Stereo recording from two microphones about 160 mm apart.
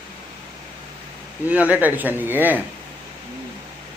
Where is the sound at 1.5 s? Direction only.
10° right (ahead or behind).